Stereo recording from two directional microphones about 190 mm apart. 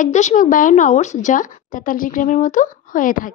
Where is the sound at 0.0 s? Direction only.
40° left (ahead or behind).